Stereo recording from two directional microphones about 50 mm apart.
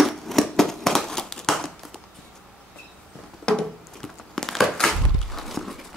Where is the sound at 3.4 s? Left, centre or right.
Centre.